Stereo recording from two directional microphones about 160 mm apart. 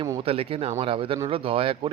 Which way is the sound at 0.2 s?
35° right (ahead or behind).